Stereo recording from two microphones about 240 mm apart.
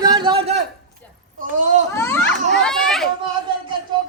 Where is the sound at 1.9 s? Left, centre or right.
Centre.